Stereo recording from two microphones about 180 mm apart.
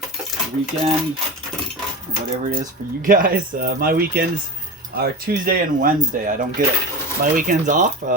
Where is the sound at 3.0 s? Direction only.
50° right (ahead or behind).